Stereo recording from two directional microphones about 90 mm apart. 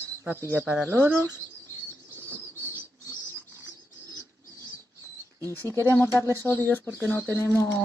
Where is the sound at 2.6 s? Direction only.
25° right (ahead or behind).